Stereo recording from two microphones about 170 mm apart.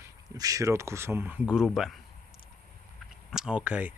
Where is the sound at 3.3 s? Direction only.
5° right (ahead or behind).